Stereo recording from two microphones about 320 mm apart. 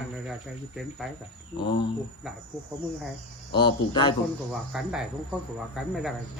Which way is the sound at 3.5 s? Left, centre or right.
Centre.